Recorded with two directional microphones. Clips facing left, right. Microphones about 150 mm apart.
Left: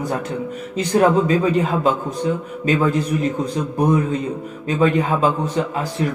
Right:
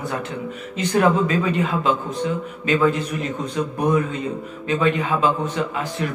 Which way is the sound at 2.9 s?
40° left (ahead or behind).